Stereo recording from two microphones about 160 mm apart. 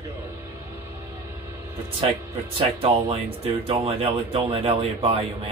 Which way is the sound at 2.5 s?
35° right (ahead or behind).